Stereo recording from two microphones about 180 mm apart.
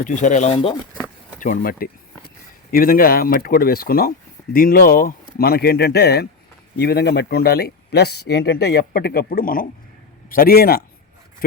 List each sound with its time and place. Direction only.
0.0 s speech: 45° left (ahead or behind)
0.5 s speech: 30° left (ahead or behind)
1.4 s speech: 50° left (ahead or behind)